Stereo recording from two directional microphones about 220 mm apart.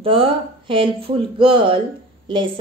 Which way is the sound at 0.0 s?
25° right (ahead or behind).